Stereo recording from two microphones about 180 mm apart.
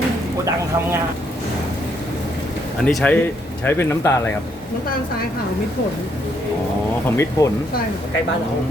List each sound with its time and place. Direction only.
2.8 s speech: 5° left (ahead or behind)
7.2 s speech: 15° left (ahead or behind)